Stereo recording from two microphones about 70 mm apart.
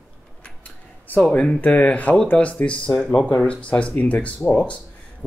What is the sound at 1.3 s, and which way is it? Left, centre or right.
Speech, centre.